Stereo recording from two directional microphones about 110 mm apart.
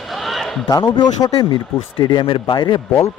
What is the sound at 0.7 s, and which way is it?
A man's voice, 40° left (ahead or behind).